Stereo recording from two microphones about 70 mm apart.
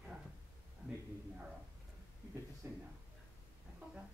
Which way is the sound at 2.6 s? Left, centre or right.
Right.